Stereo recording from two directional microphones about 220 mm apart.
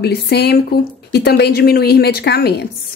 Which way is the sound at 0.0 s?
45° left (ahead or behind).